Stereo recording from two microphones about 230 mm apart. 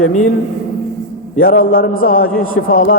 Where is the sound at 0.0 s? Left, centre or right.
Left.